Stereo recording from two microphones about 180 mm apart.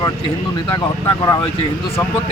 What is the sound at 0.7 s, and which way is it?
Speech, 20° left (ahead or behind).